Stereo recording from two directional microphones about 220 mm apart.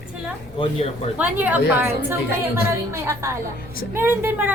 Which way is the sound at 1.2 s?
5° right (ahead or behind).